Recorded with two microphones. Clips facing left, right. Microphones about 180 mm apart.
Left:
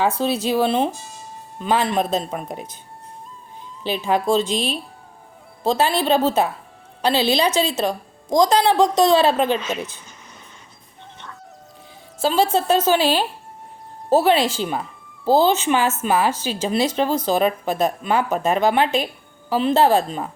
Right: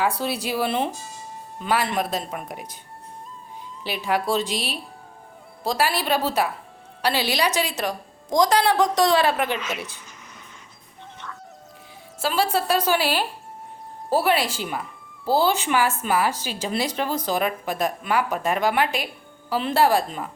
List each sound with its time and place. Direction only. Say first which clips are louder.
0.2 s speech: left 6 dB; 20° left (ahead or behind)
3.8 s speech: left 4 dB; 20° left (ahead or behind)
4.4 s speech: left 6 dB; 15° right (ahead or behind)
5.6 s a woman's voice: left 5 dB; 25° left (ahead or behind)
12.2 s speech: left 4 dB; 25° left (ahead or behind)